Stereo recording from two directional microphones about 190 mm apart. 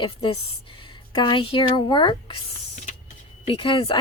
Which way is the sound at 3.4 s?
25° left (ahead or behind).